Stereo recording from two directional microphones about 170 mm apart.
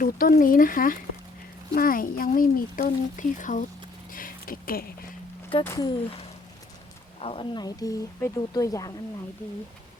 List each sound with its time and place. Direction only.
0.0 s speech: 55° left (ahead or behind)
5.7 s a woman's voice: 25° left (ahead or behind)
7.2 s a woman's voice: 35° left (ahead or behind)